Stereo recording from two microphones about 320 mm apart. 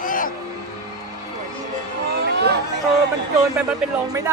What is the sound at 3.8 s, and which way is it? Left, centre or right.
Speech, centre.